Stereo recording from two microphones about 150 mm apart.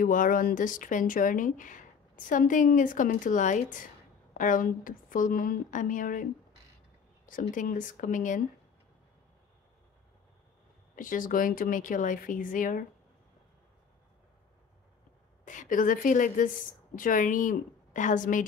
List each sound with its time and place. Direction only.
0.0 s speech: 65° left (ahead or behind)
7.2 s speech: 65° left (ahead or behind)
11.0 s speech: 65° left (ahead or behind)
15.4 s speech: 55° left (ahead or behind)